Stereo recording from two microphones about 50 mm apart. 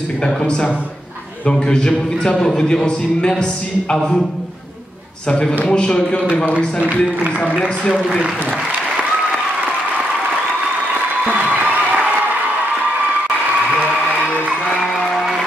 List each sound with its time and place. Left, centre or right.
0.2 s speech: centre
5.3 s speech: centre
11.2 s a sound: right
14.8 s music: centre